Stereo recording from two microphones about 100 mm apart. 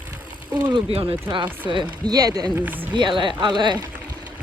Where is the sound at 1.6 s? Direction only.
55° right (ahead or behind).